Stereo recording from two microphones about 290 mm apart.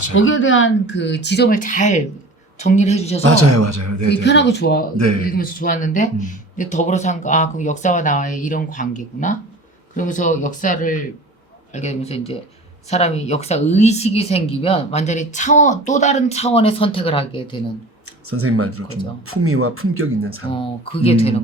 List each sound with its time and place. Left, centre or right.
0.1 s speech: left
3.2 s a man's voice: right
4.1 s speech: left
4.9 s a man's voice: right
5.3 s speech: left
18.0 s speech: right
20.5 s speech: centre